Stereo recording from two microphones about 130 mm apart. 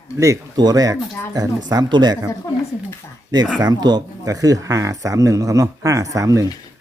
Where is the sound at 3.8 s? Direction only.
30° right (ahead or behind).